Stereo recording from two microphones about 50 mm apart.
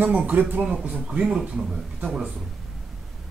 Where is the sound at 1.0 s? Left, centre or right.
Right.